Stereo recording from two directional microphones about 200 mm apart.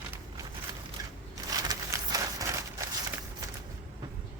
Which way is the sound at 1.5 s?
20° right (ahead or behind).